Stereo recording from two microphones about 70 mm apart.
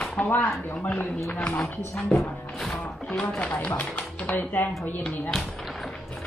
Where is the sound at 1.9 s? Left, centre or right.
Centre.